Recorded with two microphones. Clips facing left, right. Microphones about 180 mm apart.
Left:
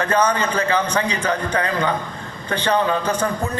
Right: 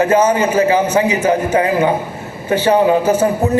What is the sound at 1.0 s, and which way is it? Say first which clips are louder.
Speech: right 8 dB; 15° right (ahead or behind).